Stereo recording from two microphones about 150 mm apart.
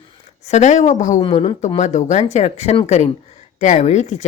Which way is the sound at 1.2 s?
35° left (ahead or behind).